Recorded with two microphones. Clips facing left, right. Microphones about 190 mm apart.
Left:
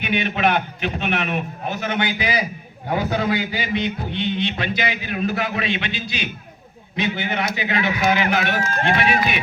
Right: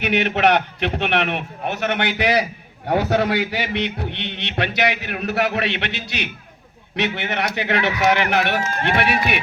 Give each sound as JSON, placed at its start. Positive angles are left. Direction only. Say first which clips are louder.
{"t": 0.0, "sound": "a man's voice", "louder": "right 3 dB", "side_deg": -75}